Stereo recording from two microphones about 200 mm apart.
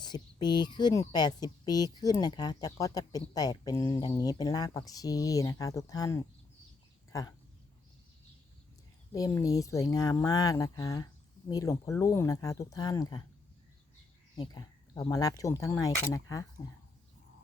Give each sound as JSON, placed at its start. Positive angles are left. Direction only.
{"t": 0.0, "sound": "speech", "side_deg": 20}
{"t": 9.1, "sound": "speech", "side_deg": 15}
{"t": 14.3, "sound": "speech", "side_deg": 20}